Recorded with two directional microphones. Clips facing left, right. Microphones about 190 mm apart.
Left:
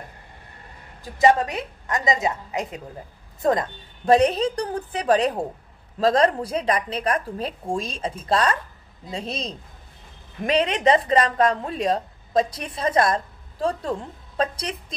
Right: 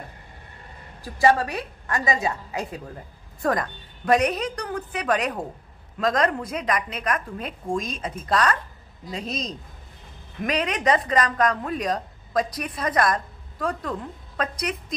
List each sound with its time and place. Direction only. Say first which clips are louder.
1.1 s a woman's voice: left 2 dB; 20° left (ahead or behind)